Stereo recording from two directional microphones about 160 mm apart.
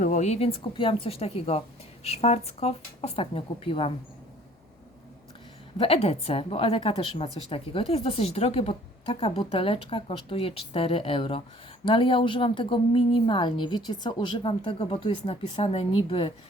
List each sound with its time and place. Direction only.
0.0 s a woman's voice: 50° left (ahead or behind)
5.7 s a woman's voice: 35° left (ahead or behind)